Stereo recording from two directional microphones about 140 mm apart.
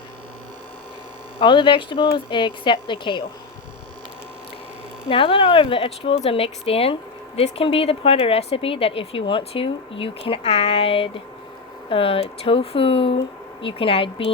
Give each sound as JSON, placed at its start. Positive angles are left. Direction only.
{"t": 1.4, "sound": "speech", "side_deg": 35}
{"t": 5.0, "sound": "speech", "side_deg": 40}